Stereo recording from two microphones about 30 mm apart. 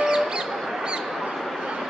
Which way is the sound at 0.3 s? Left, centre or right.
Right.